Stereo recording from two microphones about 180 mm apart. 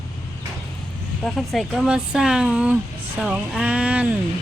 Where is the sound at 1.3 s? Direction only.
Centre (ahead or behind).